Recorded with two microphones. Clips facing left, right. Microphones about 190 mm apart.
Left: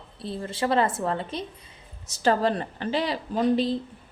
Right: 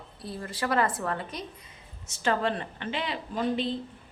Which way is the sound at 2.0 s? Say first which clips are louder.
Left 5 dB; 35° left (ahead or behind).